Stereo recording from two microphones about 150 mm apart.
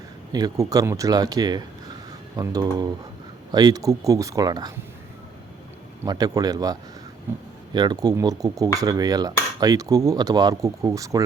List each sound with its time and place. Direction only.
0.3 s cutlery: 25° right (ahead or behind)
6.1 s cutlery: 25° right (ahead or behind)